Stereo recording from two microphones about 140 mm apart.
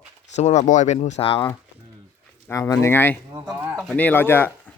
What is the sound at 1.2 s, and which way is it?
Speech, 40° left (ahead or behind).